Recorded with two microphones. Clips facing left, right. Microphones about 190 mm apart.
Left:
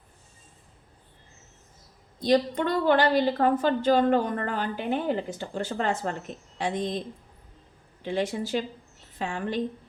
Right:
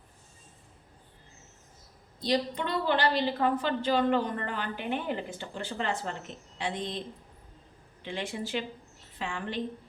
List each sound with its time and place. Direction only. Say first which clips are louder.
2.2 s a woman's voice: left 6 dB; 50° left (ahead or behind)
8.0 s a woman's voice: left 7 dB; 40° left (ahead or behind)